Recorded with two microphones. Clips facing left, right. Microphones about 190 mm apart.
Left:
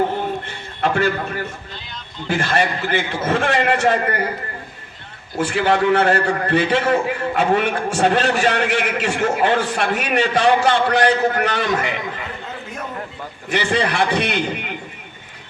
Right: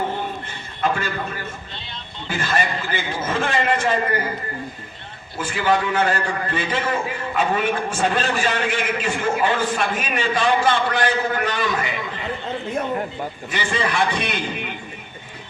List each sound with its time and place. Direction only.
0.8 s a man's voice: 70° left (ahead or behind)
2.4 s a man's voice: 65° left (ahead or behind)
5.4 s a man's voice: 70° left (ahead or behind)
13.5 s a man's voice: 70° left (ahead or behind)